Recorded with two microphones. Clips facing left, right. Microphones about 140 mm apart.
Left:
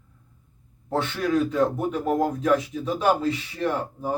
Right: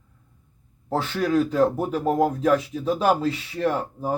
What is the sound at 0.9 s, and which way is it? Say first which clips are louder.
Speech: right 1 dB; 30° right (ahead or behind).